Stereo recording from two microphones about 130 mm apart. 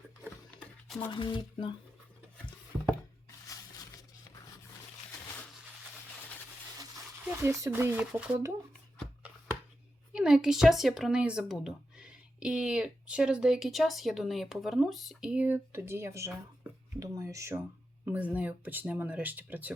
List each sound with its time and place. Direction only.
1.1 s speech: 40° left (ahead or behind)
2.7 s a sound: centre (ahead or behind)
3.2 s a sound: 25° left (ahead or behind)
7.3 s speech: 20° right (ahead or behind)
10.1 s speech: 5° right (ahead or behind); by 17.6 s 20° right (ahead or behind)
18.0 s speech: 10° right (ahead or behind)